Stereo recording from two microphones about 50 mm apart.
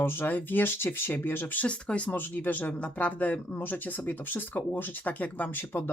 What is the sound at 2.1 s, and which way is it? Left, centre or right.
Speech, left.